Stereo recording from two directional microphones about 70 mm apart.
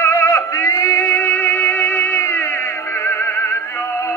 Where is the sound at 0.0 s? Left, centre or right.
Left.